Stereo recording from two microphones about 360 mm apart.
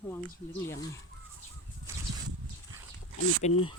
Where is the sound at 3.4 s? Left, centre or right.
Centre.